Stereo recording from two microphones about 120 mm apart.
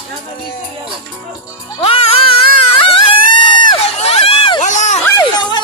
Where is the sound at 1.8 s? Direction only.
50° left (ahead or behind).